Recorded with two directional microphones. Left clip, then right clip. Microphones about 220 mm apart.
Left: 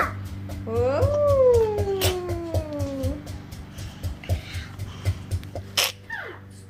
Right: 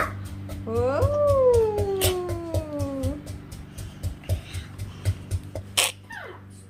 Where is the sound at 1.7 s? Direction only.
5° left (ahead or behind).